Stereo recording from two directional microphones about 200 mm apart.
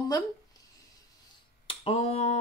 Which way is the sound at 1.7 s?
30° left (ahead or behind).